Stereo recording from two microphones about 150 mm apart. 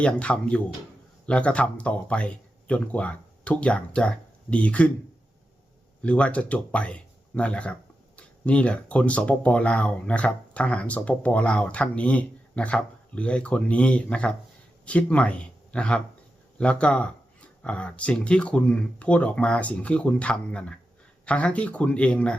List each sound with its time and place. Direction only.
0.0 s speech: 10° left (ahead or behind)
6.0 s speech: 10° left (ahead or behind)